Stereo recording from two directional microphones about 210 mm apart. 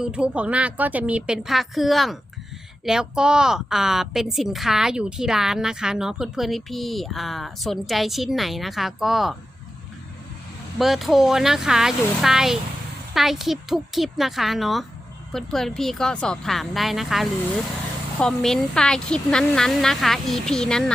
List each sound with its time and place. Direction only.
0.0 s a woman's voice: 5° right (ahead or behind)
10.8 s a woman's voice: centre (ahead or behind)